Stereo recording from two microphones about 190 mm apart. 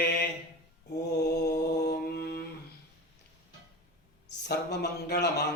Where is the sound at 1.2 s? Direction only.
60° left (ahead or behind).